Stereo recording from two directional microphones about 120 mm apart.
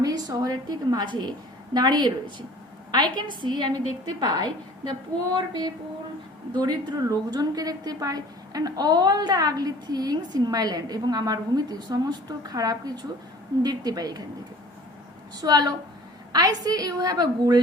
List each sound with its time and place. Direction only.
0.0 s a woman's voice: 30° right (ahead or behind)
6.5 s a woman's voice: 35° right (ahead or behind)
15.4 s a woman's voice: 35° right (ahead or behind)